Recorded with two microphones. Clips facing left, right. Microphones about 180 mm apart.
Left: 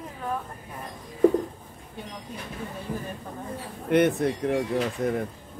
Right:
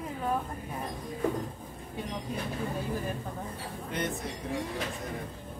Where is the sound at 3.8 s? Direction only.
65° left (ahead or behind).